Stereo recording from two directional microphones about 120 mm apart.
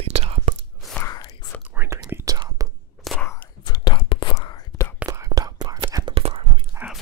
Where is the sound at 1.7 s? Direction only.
20° right (ahead or behind).